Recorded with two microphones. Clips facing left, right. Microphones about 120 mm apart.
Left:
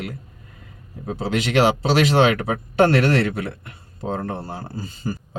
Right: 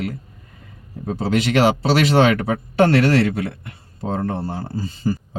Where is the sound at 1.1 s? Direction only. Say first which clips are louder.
Right 3 dB; 40° right (ahead or behind).